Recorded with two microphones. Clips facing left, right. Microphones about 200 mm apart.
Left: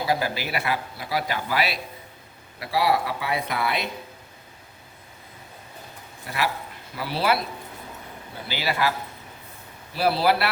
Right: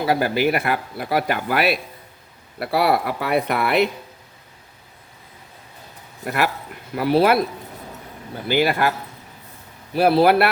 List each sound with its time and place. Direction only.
0.1 s a man's voice: 55° right (ahead or behind)
6.2 s a man's voice: 55° right (ahead or behind)
8.4 s a man's voice: 50° right (ahead or behind)
9.9 s a man's voice: 55° right (ahead or behind)